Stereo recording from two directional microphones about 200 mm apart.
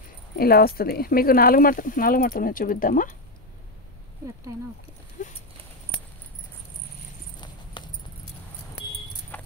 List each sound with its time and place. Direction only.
0.4 s speech: 50° left (ahead or behind)
5.2 s speech: 45° left (ahead or behind)
7.8 s keys jangling: 20° left (ahead or behind)
9.3 s a sound: 10° left (ahead or behind)